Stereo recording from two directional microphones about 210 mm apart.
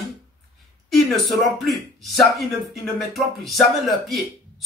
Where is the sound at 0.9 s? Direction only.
Centre (ahead or behind).